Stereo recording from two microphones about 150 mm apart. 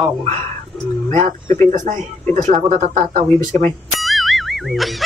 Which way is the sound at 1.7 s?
55° right (ahead or behind).